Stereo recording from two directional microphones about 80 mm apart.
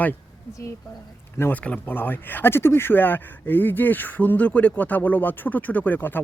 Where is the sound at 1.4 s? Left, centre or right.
Left.